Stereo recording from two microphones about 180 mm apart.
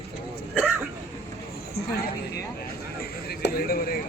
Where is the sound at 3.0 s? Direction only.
60° left (ahead or behind).